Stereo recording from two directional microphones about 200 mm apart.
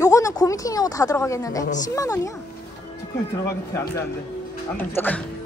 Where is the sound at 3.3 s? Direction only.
15° left (ahead or behind).